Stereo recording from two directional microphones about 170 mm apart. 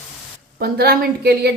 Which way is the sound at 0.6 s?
65° right (ahead or behind).